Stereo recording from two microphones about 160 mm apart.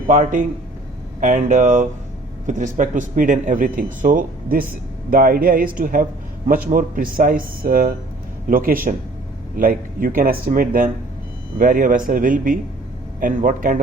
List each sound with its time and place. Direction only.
0.1 s speech: 55° right (ahead or behind)